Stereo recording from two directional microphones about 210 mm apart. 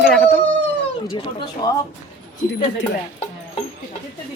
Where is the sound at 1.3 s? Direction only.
20° left (ahead or behind).